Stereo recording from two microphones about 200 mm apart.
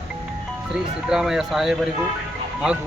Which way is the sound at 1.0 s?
5° right (ahead or behind).